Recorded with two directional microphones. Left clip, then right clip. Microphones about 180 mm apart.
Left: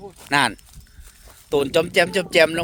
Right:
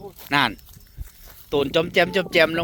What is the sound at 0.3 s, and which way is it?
Speech, 35° left (ahead or behind).